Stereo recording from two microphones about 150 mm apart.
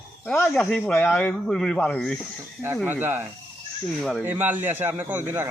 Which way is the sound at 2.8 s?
15° right (ahead or behind).